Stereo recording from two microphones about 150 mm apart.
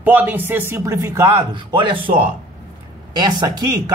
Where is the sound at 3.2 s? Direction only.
25° right (ahead or behind).